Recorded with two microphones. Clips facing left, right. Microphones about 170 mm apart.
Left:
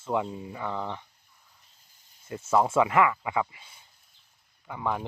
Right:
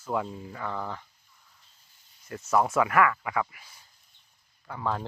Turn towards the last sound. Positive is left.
turn(degrees=15)  # may be behind; listen again after turning